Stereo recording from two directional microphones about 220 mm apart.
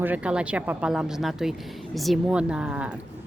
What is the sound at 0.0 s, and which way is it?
Speech, 5° right (ahead or behind).